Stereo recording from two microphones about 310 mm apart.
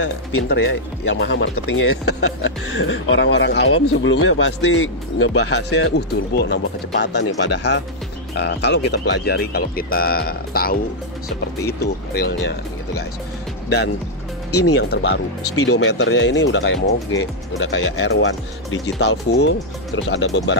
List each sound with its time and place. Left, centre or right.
0.0 s speech: left
11.8 s speech: left
14.7 s speech: left